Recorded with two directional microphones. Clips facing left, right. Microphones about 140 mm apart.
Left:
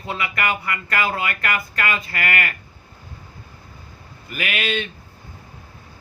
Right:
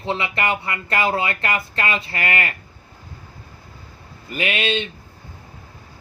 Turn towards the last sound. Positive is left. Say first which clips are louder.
# right 2 dB
turn(degrees=-25)  # may be behind; listen again after turning